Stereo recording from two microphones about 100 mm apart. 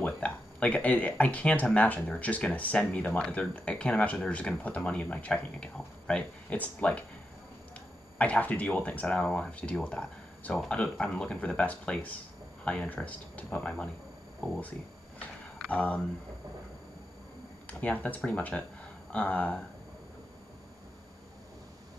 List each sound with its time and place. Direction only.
0.0 s speech: 15° left (ahead or behind)
8.2 s speech: 15° left (ahead or behind)
15.7 s speech: 15° left (ahead or behind)
17.6 s speech: 15° left (ahead or behind)